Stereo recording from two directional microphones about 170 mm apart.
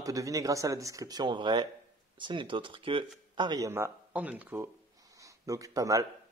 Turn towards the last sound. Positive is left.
turn(degrees=-20)  # may be behind; listen again after turning